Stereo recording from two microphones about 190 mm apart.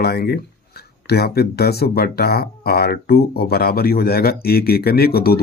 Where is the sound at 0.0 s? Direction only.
55° left (ahead or behind).